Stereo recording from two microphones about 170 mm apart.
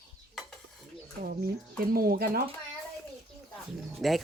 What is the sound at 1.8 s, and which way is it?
Speech, 60° right (ahead or behind).